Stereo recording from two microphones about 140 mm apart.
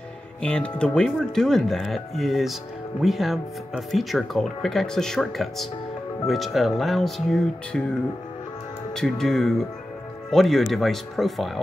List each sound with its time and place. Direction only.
0.4 s speech: 5° left (ahead or behind)
8.9 s speech: 5° left (ahead or behind)